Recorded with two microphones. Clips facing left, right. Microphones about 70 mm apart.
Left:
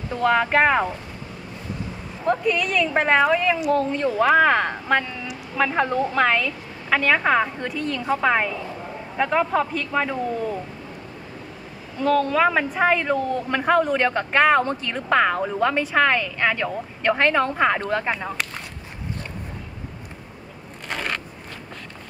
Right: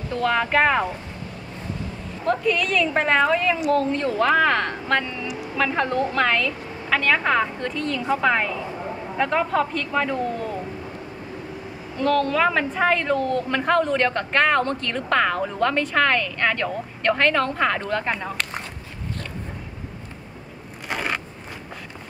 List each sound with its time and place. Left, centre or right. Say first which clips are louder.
0.1 s a woman's voice: left 2 dB; centre
2.2 s a woman's voice: even; centre
12.0 s a woman's voice: left 1 dB; centre
20.9 s a sound: right 1 dB; centre